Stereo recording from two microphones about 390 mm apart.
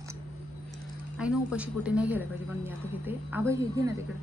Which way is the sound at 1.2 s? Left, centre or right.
Centre.